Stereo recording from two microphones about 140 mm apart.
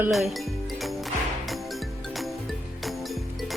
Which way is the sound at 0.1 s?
Centre (ahead or behind).